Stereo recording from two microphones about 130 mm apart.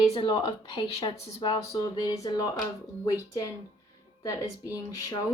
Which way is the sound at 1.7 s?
25° left (ahead or behind).